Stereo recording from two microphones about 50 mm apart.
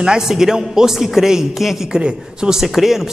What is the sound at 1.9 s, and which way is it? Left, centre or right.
A man's voice, centre.